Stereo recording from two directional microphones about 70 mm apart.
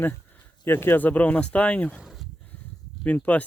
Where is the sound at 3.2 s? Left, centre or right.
Left.